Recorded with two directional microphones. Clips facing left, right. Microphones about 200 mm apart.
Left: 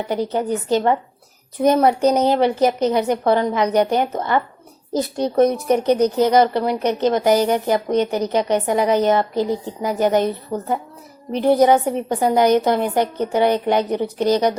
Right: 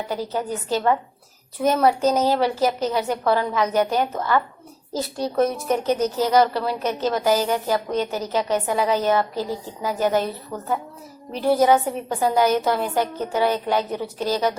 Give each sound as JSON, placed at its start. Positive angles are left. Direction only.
{"t": 0.1, "sound": "a woman's voice", "side_deg": 20}